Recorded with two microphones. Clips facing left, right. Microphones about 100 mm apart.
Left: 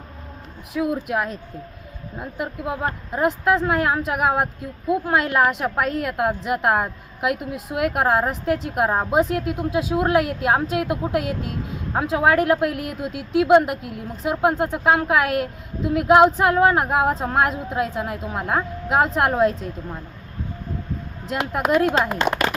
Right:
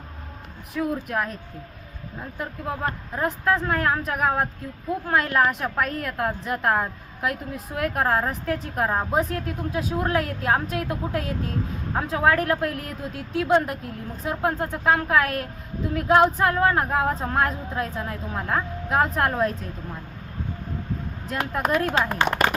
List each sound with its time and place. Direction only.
0.7 s a woman's voice: 10° left (ahead or behind)
21.2 s a woman's voice: 15° left (ahead or behind)